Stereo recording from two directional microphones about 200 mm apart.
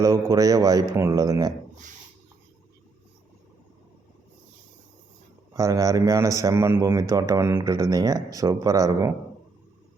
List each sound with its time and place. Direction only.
0.3 s a man's voice: 20° right (ahead or behind)
5.5 s a man's voice: 15° right (ahead or behind)